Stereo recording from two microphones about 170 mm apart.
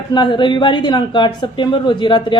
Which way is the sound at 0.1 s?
25° left (ahead or behind).